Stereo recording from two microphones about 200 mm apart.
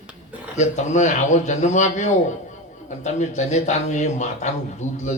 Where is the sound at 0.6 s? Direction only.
35° left (ahead or behind).